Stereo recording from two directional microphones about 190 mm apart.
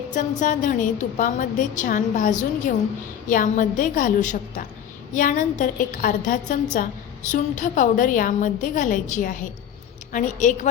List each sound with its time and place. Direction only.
0.1 s a woman's voice: 40° left (ahead or behind)